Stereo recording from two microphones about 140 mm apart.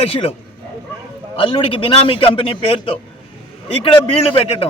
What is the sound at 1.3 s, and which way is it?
A man's voice, 40° left (ahead or behind).